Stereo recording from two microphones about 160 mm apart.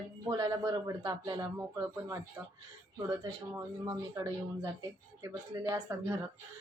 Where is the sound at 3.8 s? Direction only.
20° right (ahead or behind).